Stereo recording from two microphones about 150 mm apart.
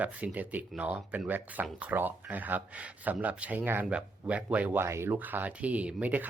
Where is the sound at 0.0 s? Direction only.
10° right (ahead or behind).